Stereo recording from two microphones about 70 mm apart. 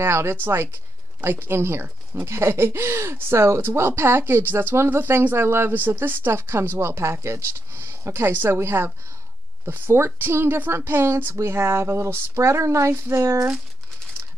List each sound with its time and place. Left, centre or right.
0.0 s speech: right